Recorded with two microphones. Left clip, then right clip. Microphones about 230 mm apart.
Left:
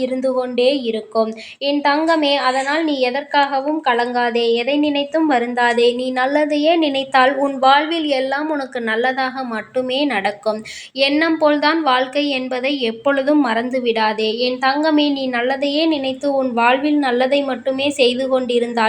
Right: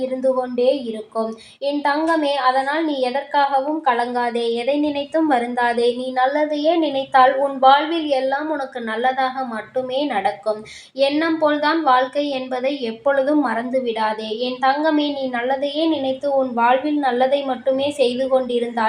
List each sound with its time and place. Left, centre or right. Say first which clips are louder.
0.2 s a woman's voice: left 1 dB; left